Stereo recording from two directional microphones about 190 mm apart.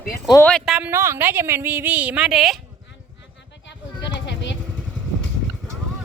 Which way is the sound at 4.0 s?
70° left (ahead or behind).